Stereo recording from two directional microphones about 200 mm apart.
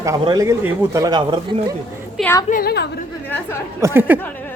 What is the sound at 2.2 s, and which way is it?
Speech, centre (ahead or behind).